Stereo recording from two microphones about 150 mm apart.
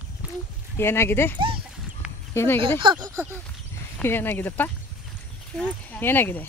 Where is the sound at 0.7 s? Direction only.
15° left (ahead or behind).